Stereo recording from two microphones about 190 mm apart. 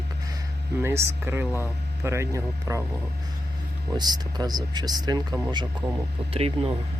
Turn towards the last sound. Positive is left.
turn(degrees=-30)  # may be behind; listen again after turning